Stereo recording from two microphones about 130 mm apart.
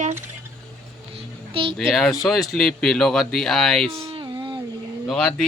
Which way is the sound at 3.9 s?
50° right (ahead or behind).